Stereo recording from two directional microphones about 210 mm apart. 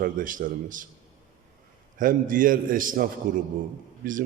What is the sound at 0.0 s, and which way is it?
Speech, 40° right (ahead or behind).